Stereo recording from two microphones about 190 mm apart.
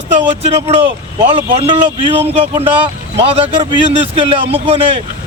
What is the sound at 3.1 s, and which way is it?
Speech, 30° right (ahead or behind).